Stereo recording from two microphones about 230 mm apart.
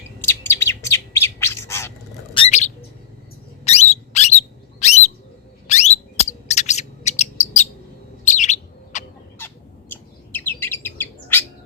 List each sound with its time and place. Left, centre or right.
0.3 s bird: centre
2.3 s bird: left
3.6 s squeak: left
5.6 s bird: left
8.2 s chirp: left
9.9 s bird: centre